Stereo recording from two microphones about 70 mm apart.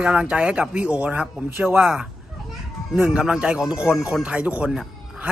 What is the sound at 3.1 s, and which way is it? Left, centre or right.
Speech, centre.